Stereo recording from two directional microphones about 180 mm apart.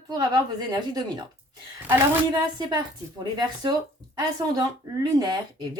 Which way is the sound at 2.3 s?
25° right (ahead or behind).